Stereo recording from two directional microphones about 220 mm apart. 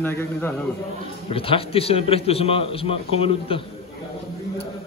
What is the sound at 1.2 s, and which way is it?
A man's voice, 25° left (ahead or behind).